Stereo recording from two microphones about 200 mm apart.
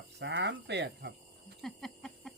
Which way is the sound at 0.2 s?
60° right (ahead or behind).